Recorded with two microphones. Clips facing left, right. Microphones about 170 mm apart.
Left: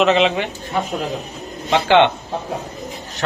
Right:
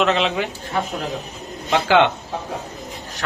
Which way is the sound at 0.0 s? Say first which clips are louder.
Left 4 dB; 5° left (ahead or behind).